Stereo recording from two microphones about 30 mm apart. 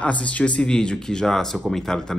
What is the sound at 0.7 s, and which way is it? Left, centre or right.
Speech, left.